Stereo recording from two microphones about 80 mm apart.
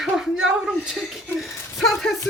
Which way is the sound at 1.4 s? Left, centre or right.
Left.